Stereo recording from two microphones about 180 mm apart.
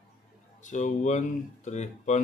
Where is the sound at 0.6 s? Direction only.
40° left (ahead or behind).